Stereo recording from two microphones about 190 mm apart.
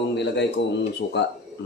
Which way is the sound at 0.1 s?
65° left (ahead or behind).